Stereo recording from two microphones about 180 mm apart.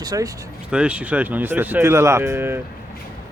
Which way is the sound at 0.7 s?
5° right (ahead or behind).